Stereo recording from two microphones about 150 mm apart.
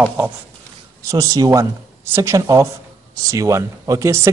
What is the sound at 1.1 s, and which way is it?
Speech, 20° right (ahead or behind).